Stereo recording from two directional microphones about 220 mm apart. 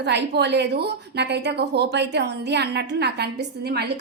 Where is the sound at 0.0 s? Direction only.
50° right (ahead or behind).